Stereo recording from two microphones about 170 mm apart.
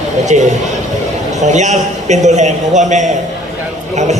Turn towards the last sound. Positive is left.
turn(degrees=-45)  # may be behind; listen again after turning